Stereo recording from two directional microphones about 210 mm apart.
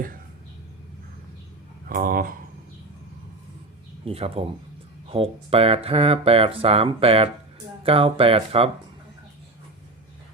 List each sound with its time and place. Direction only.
1.9 s speech: 45° right (ahead or behind)
4.0 s speech: 30° right (ahead or behind)